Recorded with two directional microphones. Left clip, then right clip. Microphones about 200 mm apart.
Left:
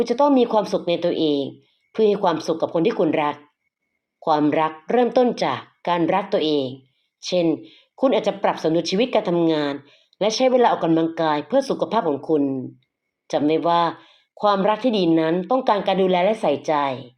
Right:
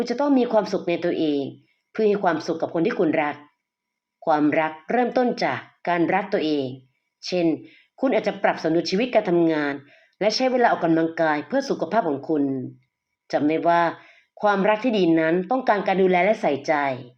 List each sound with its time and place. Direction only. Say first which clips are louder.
0.0 s a woman's voice: left 4 dB; 25° left (ahead or behind)
1.1 s speech: left 3 dB; 5° right (ahead or behind)
2.0 s a woman's voice: left 2 dB; 30° left (ahead or behind)
7.3 s a woman's voice: left 2 dB; 30° left (ahead or behind)